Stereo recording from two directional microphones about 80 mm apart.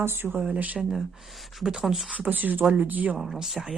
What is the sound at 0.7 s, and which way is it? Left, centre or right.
Speech, centre.